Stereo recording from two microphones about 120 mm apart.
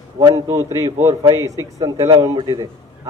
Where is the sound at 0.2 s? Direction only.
25° right (ahead or behind).